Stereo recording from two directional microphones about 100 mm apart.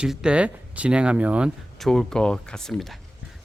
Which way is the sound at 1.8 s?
5° left (ahead or behind).